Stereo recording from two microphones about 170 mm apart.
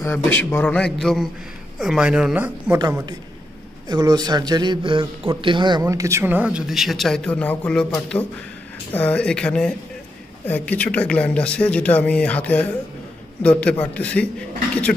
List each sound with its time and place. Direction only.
0.0 s speech: 10° left (ahead or behind); by 2.8 s 10° right (ahead or behind)
3.9 s a man's voice: 20° right (ahead or behind); by 14.3 s 10° left (ahead or behind)